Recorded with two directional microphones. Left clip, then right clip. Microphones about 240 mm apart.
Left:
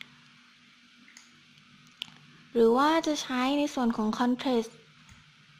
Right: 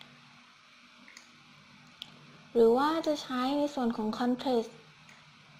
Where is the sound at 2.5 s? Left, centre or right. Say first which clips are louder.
Left 2 dB; centre.